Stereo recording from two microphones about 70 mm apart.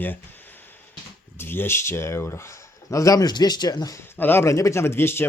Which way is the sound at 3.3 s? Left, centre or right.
Left.